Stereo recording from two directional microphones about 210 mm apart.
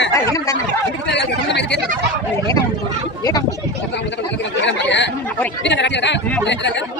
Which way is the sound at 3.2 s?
15° left (ahead or behind).